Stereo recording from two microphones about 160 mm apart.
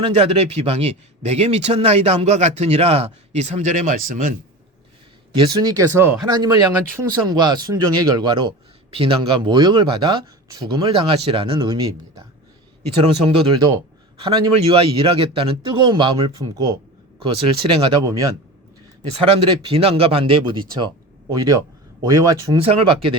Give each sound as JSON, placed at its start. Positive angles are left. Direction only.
{"t": 0.0, "sound": "speech", "side_deg": -40}
{"t": 5.3, "sound": "a man's voice", "side_deg": -25}
{"t": 13.0, "sound": "a man's voice", "side_deg": -35}
{"t": 13.5, "sound": "a man's voice", "side_deg": -25}
{"t": 18.0, "sound": "speech", "side_deg": -20}
{"t": 19.2, "sound": "a man's voice", "side_deg": -35}
{"t": 22.6, "sound": "a man's voice", "side_deg": -35}